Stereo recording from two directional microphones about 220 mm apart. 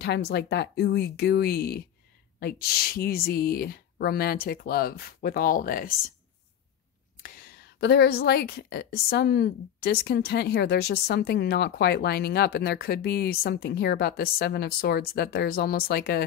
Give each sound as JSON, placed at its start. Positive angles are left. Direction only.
{"t": 0.0, "sound": "a woman's voice", "side_deg": 50}
{"t": 7.2, "sound": "a woman's voice", "side_deg": 40}